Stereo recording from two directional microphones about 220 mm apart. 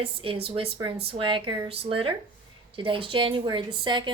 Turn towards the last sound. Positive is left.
turn(degrees=-20)  # may be behind; listen again after turning